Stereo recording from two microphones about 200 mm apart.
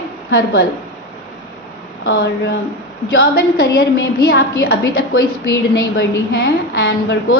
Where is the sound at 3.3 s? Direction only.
50° left (ahead or behind).